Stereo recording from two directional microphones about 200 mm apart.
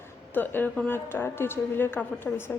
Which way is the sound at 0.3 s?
10° left (ahead or behind).